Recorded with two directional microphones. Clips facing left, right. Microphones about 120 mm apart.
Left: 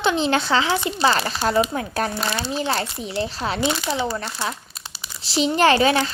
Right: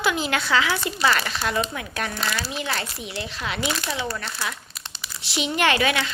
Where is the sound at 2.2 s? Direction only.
25° left (ahead or behind).